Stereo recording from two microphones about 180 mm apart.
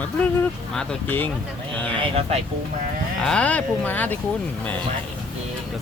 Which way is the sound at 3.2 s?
5° left (ahead or behind).